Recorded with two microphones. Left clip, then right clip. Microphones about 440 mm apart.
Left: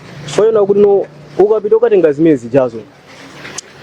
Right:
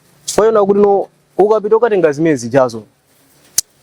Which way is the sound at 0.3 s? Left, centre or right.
Right.